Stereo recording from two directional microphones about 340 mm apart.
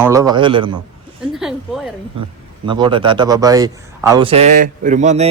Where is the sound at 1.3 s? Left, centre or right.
Centre.